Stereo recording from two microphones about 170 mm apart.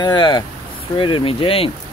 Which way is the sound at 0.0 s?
25° left (ahead or behind).